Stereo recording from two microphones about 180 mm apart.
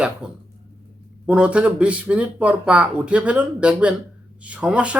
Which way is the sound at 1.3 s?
5° right (ahead or behind).